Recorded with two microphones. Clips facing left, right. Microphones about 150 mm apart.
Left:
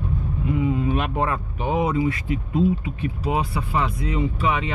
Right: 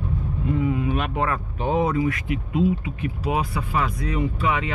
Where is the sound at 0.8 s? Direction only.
40° left (ahead or behind).